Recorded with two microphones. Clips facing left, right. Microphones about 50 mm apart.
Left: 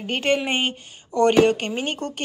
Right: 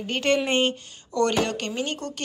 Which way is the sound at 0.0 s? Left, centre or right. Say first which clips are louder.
Left 1 dB; centre.